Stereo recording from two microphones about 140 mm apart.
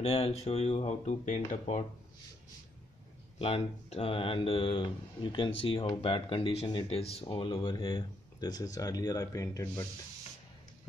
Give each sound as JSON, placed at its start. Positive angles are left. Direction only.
{"t": 0.0, "sound": "speech", "side_deg": 50}
{"t": 3.3, "sound": "speech", "side_deg": 40}